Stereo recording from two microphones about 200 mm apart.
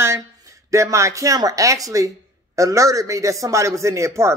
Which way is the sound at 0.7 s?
15° right (ahead or behind).